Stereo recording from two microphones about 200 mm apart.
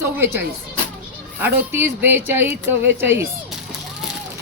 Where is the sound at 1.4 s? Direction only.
10° right (ahead or behind).